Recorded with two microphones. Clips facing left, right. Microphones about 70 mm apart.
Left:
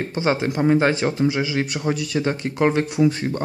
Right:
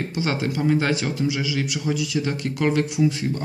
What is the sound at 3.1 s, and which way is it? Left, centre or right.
Speech, left.